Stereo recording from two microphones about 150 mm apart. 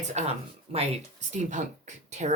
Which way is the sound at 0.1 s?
45° right (ahead or behind).